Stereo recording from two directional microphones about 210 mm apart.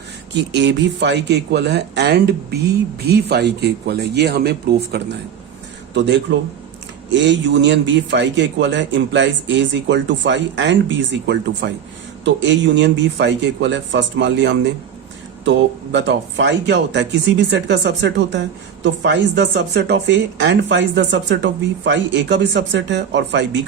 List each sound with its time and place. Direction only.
0.5 s a man's voice: 55° right (ahead or behind)
7.2 s speech: 55° right (ahead or behind)